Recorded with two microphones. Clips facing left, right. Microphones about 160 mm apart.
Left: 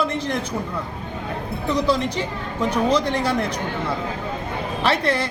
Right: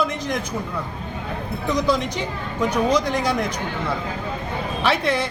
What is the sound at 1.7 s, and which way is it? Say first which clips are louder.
A man's voice: even; 30° left (ahead or behind).